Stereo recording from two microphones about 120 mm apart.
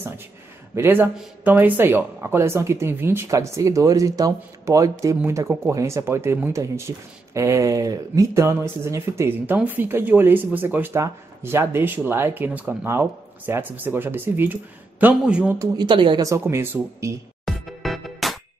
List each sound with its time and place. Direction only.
0.7 s speech: 15° right (ahead or behind)
15.7 s a woman's voice: 40° right (ahead or behind)
16.2 s speech: 25° right (ahead or behind)
17.5 s music: centre (ahead or behind)